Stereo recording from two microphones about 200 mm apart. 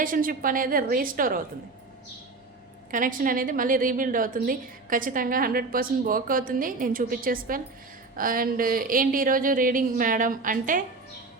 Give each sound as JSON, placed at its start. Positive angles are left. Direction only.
{"t": 0.0, "sound": "a woman's voice", "side_deg": -45}
{"t": 2.9, "sound": "a woman's voice", "side_deg": -40}